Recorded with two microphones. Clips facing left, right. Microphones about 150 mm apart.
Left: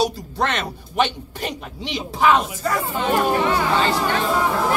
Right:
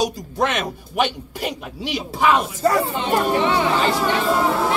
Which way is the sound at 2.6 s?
30° right (ahead or behind).